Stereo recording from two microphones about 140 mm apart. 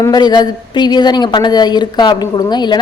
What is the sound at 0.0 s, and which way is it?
A woman's voice, 30° left (ahead or behind).